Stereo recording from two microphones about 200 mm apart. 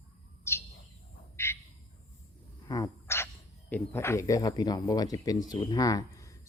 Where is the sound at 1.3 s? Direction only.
15° left (ahead or behind).